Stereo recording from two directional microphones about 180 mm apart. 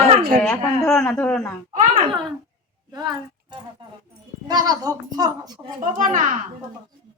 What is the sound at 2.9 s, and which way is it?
A woman's voice, 20° right (ahead or behind).